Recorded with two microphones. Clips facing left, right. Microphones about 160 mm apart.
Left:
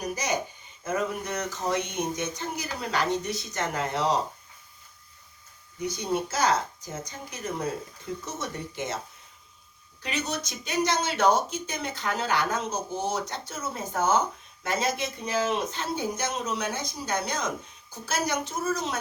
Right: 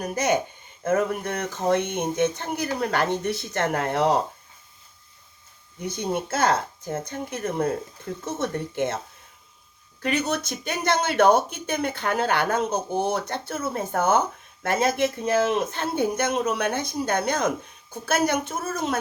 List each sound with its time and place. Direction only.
0.0 s speech: 55° right (ahead or behind)
5.8 s speech: 55° right (ahead or behind)
10.0 s speech: 55° right (ahead or behind)